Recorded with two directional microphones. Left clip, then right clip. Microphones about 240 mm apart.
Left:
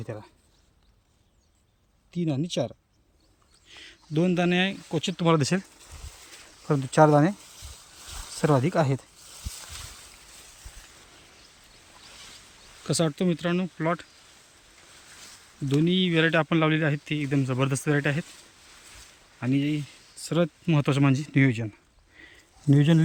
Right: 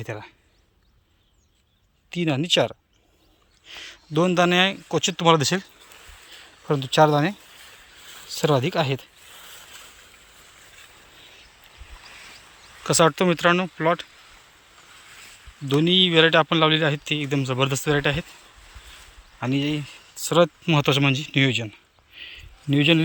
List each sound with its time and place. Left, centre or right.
0.0 s speech: right
2.4 s speech: centre
3.7 s speech: centre
6.7 s speech: centre
8.4 s speech: centre
12.8 s speech: centre
15.7 s speech: centre
19.4 s speech: centre
22.7 s speech: left